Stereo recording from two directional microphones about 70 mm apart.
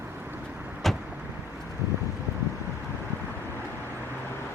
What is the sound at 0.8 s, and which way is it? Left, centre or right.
Vehicle, centre.